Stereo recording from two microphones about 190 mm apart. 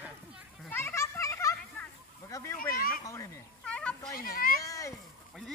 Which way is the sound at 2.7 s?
50° left (ahead or behind).